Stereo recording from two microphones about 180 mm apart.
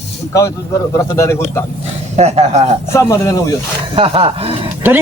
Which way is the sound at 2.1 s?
35° right (ahead or behind).